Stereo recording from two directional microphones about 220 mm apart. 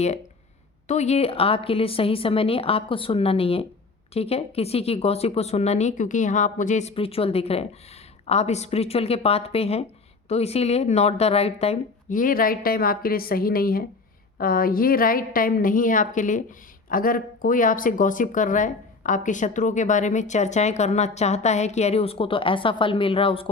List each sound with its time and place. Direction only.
0.9 s speech: 30° left (ahead or behind)